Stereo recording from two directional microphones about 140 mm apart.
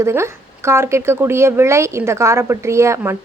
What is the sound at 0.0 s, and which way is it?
Speech, 20° right (ahead or behind).